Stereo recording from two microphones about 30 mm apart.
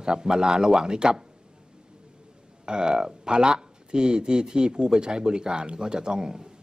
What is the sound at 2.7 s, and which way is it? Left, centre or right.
Speech, right.